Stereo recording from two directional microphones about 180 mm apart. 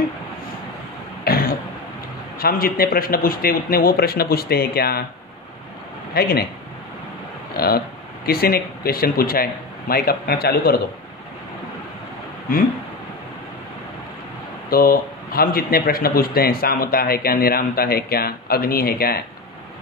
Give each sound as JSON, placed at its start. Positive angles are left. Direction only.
{"t": 1.2, "sound": "throat clearing", "side_deg": 60}
{"t": 2.3, "sound": "speech", "side_deg": 55}
{"t": 6.1, "sound": "speech", "side_deg": 60}
{"t": 7.5, "sound": "speech", "side_deg": 60}
{"t": 14.7, "sound": "speech", "side_deg": 55}